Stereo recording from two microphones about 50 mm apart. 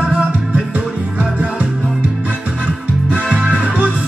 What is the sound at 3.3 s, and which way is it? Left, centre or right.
Music, right.